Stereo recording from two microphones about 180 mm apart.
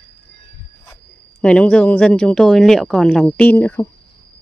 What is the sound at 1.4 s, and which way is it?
Speech, 5° left (ahead or behind).